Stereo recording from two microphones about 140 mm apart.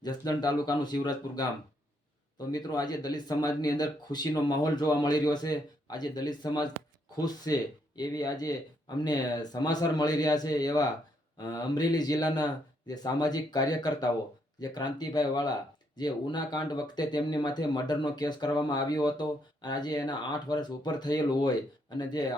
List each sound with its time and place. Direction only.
0.0 s speech: 30° left (ahead or behind)